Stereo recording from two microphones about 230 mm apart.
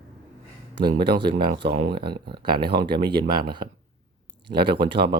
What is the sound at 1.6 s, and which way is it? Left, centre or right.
Speech, right.